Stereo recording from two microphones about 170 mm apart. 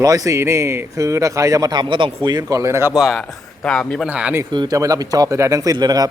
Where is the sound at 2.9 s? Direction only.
Centre (ahead or behind).